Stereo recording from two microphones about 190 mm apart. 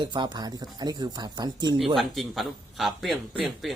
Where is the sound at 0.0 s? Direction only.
25° right (ahead or behind).